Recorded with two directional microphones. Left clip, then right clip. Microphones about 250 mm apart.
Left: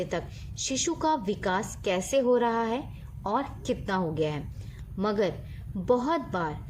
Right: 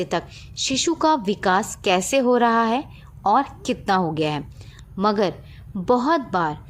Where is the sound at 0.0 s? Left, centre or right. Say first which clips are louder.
Right 7 dB; right.